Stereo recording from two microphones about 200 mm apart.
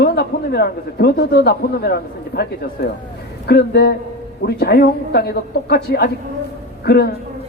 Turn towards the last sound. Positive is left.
turn(degrees=55)  # may be behind; listen again after turning